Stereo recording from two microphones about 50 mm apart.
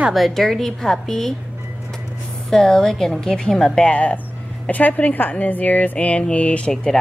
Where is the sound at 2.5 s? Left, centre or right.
Centre.